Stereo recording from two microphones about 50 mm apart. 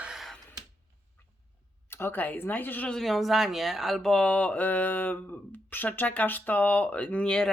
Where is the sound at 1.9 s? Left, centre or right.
Left.